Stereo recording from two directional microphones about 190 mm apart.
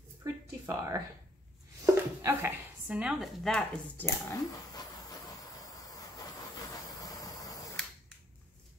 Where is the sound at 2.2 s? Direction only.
10° right (ahead or behind).